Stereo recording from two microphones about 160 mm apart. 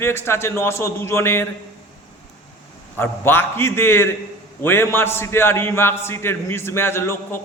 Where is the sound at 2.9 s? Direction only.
15° left (ahead or behind).